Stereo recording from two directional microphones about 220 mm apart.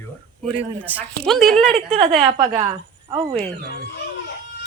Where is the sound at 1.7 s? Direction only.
25° right (ahead or behind).